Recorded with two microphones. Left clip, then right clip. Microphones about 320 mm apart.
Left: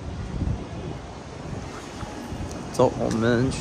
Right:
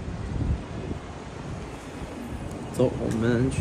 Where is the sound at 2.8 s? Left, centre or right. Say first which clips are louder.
Left 4 dB; centre.